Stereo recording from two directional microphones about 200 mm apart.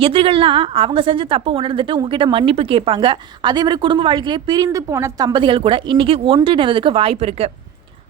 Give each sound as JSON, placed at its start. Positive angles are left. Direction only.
{"t": 0.0, "sound": "a woman's voice", "side_deg": -25}